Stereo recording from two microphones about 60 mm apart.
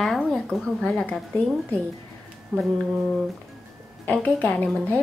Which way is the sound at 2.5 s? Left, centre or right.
Centre.